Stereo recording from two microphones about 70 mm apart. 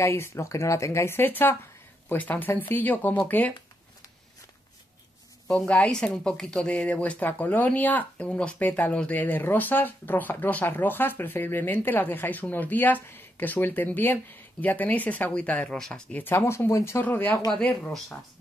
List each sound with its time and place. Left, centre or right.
0.0 s speech: left
5.7 s speech: centre
16.2 s speech: left
17.0 s speech: left